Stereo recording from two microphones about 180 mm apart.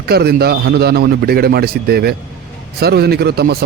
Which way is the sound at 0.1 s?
60° right (ahead or behind).